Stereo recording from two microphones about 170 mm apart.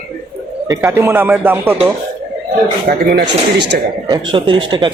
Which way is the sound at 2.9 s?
60° right (ahead or behind).